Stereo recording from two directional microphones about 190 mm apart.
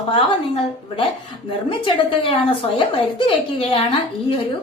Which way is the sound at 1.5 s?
25° left (ahead or behind).